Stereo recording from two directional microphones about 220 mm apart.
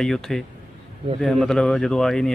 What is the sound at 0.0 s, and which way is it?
Speech, centre (ahead or behind).